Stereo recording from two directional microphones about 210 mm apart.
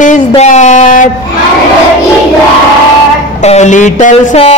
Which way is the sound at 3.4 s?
35° left (ahead or behind).